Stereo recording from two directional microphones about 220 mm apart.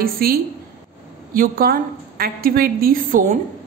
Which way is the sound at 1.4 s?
40° right (ahead or behind).